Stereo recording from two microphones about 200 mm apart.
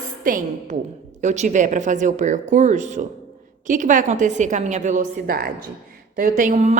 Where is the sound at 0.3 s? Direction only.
40° right (ahead or behind).